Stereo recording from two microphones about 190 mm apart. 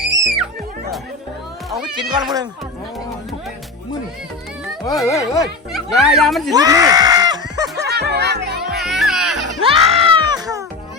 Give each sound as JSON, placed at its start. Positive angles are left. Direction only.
{"t": 2.0, "sound": "speech", "side_deg": -25}
{"t": 4.6, "sound": "music", "side_deg": 0}
{"t": 5.1, "sound": "speech", "side_deg": 15}
{"t": 5.7, "sound": "speech", "side_deg": 0}
{"t": 6.5, "sound": "screaming", "side_deg": -20}
{"t": 7.8, "sound": "music", "side_deg": -60}
{"t": 8.7, "sound": "music", "side_deg": 0}
{"t": 9.6, "sound": "music", "side_deg": -30}